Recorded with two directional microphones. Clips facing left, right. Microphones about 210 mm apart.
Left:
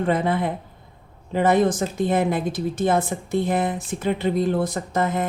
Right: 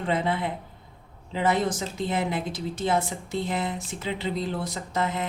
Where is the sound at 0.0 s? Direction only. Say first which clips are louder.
Left 5 dB; 50° left (ahead or behind).